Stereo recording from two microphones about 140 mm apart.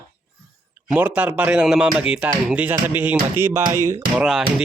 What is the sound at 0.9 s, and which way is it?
Speech, 10° right (ahead or behind).